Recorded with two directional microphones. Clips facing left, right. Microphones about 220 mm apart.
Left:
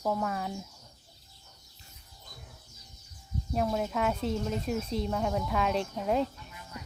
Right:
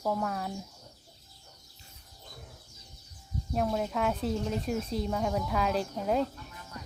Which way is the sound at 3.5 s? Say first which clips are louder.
Even; centre (ahead or behind).